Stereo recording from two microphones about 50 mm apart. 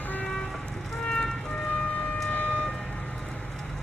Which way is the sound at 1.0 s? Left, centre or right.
Centre.